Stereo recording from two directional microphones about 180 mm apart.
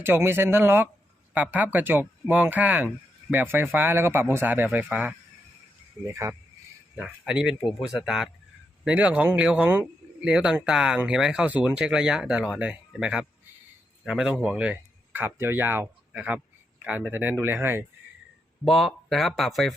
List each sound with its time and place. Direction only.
0.0 s speech: 10° right (ahead or behind)
6.2 s speech: 20° right (ahead or behind)
6.9 s speech: 5° right (ahead or behind)
18.6 s speech: centre (ahead or behind)